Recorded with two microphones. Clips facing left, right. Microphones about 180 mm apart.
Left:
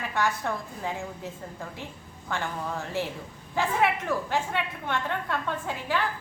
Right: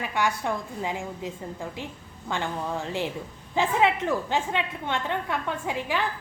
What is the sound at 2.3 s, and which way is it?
A woman's voice, 20° right (ahead or behind).